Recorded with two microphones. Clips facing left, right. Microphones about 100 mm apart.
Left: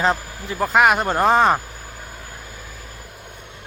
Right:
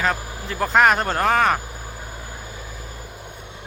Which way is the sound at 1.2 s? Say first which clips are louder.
Left 3 dB; 20° left (ahead or behind).